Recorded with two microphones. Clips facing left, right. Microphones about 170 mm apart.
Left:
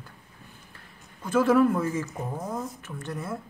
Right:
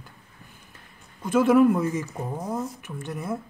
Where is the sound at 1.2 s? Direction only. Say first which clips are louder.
Right 3 dB; 20° right (ahead or behind).